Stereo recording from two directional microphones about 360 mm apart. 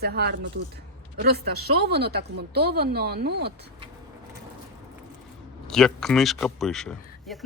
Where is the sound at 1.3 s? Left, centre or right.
Right.